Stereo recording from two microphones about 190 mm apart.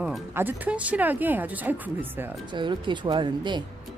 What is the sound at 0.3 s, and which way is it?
Speech, 10° right (ahead or behind).